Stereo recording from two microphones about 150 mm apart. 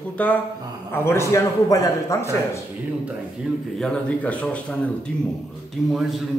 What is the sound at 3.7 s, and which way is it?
Speech, 5° left (ahead or behind).